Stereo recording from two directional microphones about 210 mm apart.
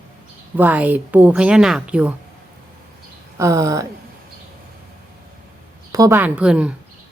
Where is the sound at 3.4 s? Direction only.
15° right (ahead or behind).